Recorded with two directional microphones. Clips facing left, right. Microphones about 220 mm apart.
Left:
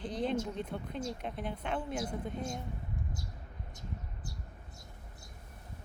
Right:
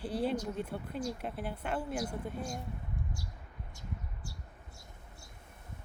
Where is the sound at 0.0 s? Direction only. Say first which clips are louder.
Even; 10° right (ahead or behind).